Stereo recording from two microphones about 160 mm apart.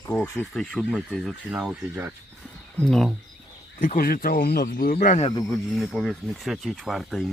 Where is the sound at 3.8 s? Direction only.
60° left (ahead or behind).